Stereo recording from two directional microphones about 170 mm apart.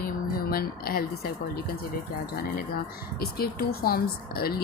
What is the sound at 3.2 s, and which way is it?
Speech, 65° left (ahead or behind).